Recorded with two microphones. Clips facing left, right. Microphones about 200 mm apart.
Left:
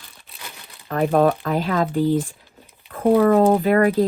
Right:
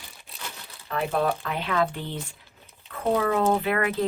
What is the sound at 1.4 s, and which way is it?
Speech, 40° left (ahead or behind).